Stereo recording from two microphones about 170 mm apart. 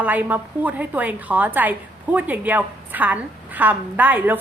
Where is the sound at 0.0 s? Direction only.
10° right (ahead or behind).